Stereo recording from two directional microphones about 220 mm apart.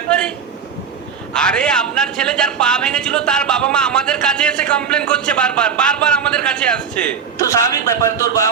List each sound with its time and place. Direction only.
0.1 s a sound: 5° left (ahead or behind)
1.3 s a man's voice: 5° left (ahead or behind)
7.4 s speech: 15° left (ahead or behind)